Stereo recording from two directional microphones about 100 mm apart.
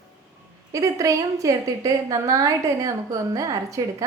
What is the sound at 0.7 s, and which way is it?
A woman's voice, 35° right (ahead or behind).